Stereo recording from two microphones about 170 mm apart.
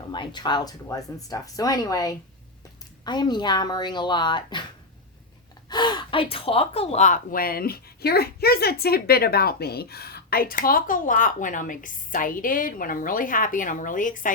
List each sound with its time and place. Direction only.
0.1 s speech: 25° left (ahead or behind)
5.6 s speech: 25° left (ahead or behind); by 14.3 s 50° left (ahead or behind)